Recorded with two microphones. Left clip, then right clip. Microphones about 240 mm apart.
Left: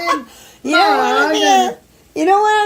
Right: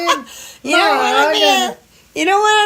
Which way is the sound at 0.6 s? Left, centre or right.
Right.